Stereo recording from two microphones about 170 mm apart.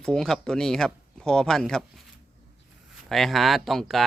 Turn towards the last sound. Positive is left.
turn(degrees=0)  # may be behind; listen again after turning